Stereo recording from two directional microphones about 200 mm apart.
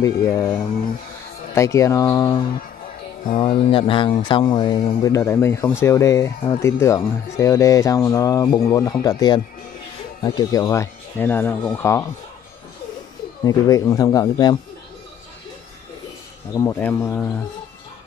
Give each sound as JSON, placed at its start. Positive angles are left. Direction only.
{"t": 0.0, "sound": "speech", "side_deg": 15}
{"t": 13.4, "sound": "speech", "side_deg": 20}
{"t": 16.5, "sound": "speech", "side_deg": 15}